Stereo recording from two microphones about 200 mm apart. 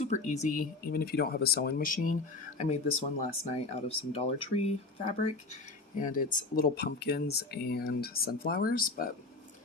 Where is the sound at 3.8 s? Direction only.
30° left (ahead or behind).